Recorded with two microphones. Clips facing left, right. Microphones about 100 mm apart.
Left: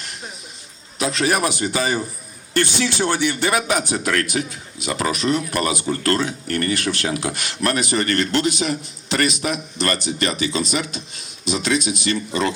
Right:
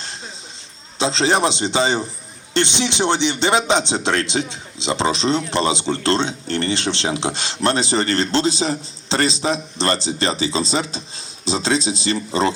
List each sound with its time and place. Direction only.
0.9 s a man's voice: 25° right (ahead or behind)